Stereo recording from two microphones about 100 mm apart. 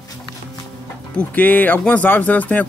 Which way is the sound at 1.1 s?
15° left (ahead or behind).